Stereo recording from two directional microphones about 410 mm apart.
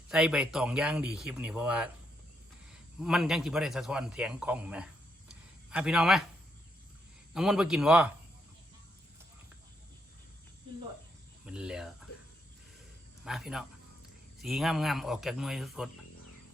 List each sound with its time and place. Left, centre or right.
0.1 s a man's voice: centre
5.3 s a sound: centre
7.3 s a man's voice: centre
11.4 s a man's voice: centre
13.2 s a man's voice: centre